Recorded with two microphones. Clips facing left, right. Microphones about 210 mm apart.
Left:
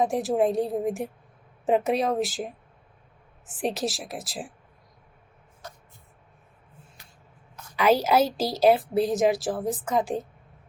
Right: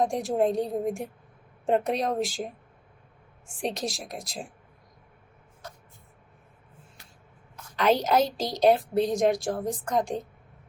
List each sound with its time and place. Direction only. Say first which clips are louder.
0.0 s a woman's voice: left 2 dB; centre (ahead or behind)
7.8 s a woman's voice: left 2 dB; 5° left (ahead or behind)